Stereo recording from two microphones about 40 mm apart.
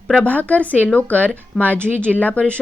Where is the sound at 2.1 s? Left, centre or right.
Left.